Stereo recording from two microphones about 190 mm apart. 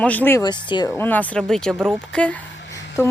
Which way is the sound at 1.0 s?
10° left (ahead or behind).